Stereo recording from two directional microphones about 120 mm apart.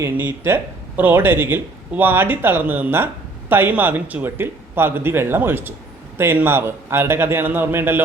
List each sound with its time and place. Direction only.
0.0 s a man's voice: 20° right (ahead or behind)